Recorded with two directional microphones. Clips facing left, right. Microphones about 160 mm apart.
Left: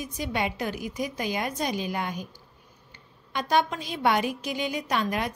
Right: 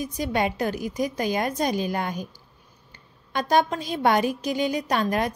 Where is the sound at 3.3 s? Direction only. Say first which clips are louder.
Right 3 dB; 40° right (ahead or behind).